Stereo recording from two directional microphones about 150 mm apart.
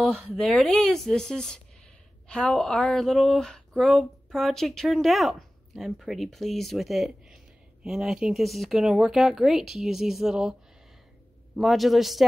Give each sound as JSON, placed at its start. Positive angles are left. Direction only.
{"t": 0.1, "sound": "speech", "side_deg": 5}
{"t": 11.5, "sound": "speech", "side_deg": 0}